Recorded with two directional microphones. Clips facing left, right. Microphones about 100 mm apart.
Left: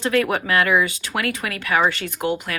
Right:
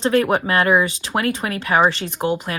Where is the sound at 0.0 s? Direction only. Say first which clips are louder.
Right 3 dB; 30° right (ahead or behind).